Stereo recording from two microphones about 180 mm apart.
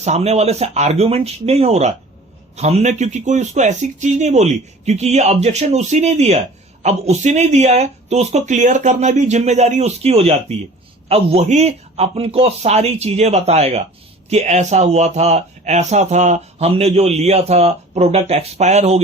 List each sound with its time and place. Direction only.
0.0 s speech: 35° right (ahead or behind)